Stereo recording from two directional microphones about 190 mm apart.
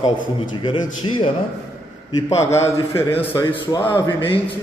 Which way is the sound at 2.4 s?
15° left (ahead or behind).